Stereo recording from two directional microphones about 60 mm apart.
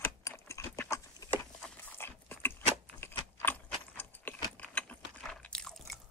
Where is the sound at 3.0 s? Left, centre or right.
Left.